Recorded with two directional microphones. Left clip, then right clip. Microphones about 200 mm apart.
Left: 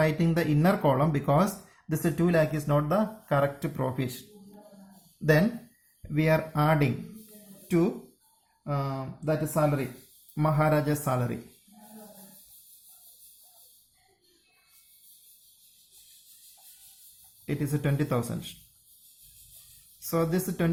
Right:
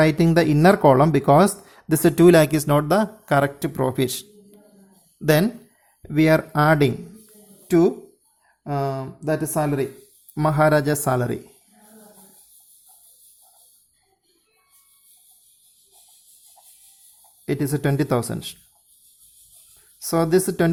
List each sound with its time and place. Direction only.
0.0 s speech: 50° right (ahead or behind)
5.2 s speech: 40° right (ahead or behind)
17.4 s speech: 50° right (ahead or behind)
20.0 s speech: 50° right (ahead or behind)